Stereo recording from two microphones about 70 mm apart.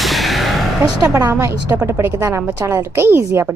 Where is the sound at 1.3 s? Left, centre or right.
Right.